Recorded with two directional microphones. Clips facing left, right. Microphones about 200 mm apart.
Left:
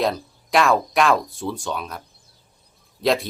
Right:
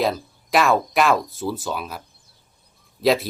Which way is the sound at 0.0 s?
Centre (ahead or behind).